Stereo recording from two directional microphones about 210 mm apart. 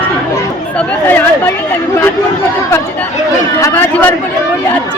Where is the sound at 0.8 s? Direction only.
10° left (ahead or behind).